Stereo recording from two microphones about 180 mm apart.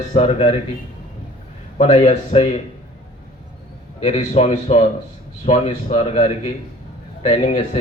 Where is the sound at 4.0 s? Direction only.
40° left (ahead or behind).